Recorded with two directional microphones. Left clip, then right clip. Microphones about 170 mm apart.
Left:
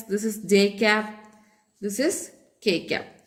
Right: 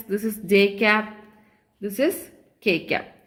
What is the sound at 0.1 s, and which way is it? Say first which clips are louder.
A woman's voice: right 1 dB; 50° right (ahead or behind).